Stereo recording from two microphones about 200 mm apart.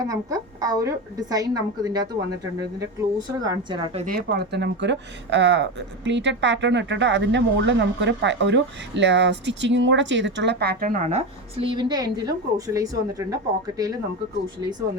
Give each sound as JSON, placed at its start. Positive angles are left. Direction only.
{"t": 0.0, "sound": "a woman's voice", "side_deg": -15}
{"t": 3.2, "sound": "a woman's voice", "side_deg": -20}
{"t": 3.9, "sound": "speech", "side_deg": -45}